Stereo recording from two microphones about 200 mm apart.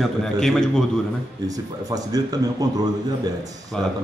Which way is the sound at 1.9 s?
20° right (ahead or behind).